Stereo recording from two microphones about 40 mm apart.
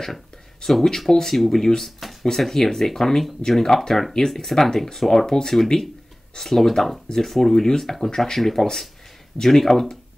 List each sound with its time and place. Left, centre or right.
0.0 s speech: centre
7.6 s speech: centre
7.9 s speech: centre